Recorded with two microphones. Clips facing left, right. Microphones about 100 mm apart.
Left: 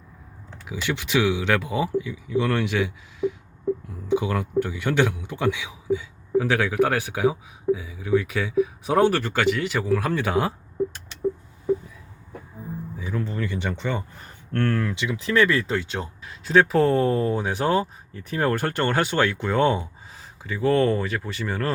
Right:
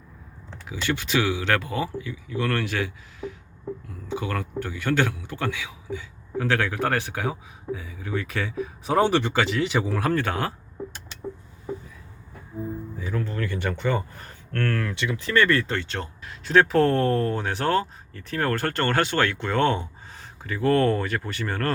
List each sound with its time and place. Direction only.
0.7 s speech: 15° left (ahead or behind)
10.1 s speech: 15° left (ahead or behind)
13.0 s speech: 10° left (ahead or behind)
13.7 s speech: 15° left (ahead or behind)
15.0 s speech: 5° left (ahead or behind)